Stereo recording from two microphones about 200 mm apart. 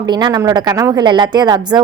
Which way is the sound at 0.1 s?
20° right (ahead or behind).